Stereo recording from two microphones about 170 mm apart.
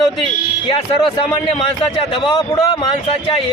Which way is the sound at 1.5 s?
35° left (ahead or behind).